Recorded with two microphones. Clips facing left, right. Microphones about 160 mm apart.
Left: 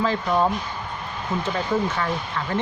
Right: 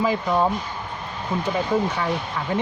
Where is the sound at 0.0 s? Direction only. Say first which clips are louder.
Right 1 dB; 15° right (ahead or behind).